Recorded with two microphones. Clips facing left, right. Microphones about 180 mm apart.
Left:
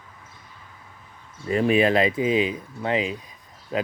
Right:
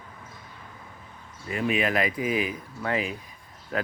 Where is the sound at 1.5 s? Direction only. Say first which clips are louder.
Left 7 dB; 30° left (ahead or behind).